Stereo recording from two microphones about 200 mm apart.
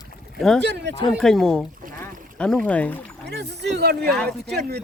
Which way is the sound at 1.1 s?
Centre (ahead or behind).